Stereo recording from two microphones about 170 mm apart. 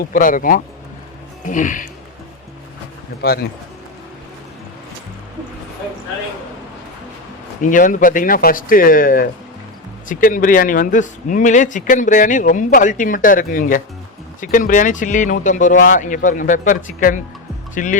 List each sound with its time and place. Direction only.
0.0 s speech: 55° left (ahead or behind)
3.2 s speech: 70° left (ahead or behind)
7.6 s speech: 50° left (ahead or behind)